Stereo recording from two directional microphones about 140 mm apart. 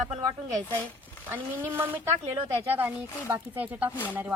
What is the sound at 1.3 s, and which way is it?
Speech, 15° right (ahead or behind).